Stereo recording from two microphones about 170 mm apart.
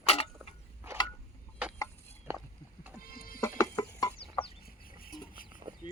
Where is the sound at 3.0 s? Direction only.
60° left (ahead or behind).